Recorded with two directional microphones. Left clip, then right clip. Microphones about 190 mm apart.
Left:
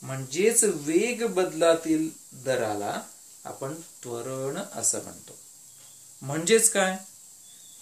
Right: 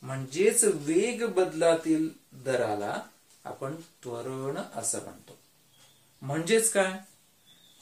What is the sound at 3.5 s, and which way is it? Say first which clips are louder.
Speech: left 2 dB; 40° left (ahead or behind).